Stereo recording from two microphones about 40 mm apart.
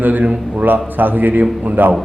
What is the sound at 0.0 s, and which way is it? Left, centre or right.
A man's voice, right.